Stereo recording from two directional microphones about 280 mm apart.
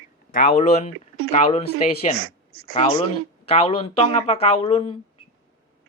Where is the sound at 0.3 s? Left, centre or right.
Left.